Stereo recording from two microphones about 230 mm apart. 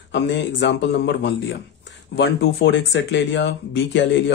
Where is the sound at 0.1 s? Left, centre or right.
Left.